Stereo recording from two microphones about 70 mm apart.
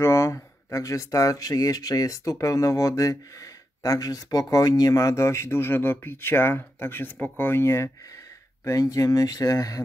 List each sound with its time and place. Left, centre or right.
0.0 s speech: left
7.6 s speech: left
8.6 s speech: left